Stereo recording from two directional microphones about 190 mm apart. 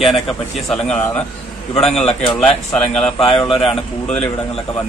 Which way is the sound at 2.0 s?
30° left (ahead or behind).